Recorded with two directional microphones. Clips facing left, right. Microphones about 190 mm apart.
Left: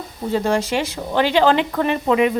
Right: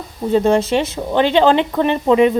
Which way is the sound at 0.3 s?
20° right (ahead or behind).